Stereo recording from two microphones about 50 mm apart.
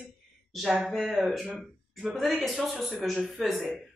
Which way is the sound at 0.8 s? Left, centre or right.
Centre.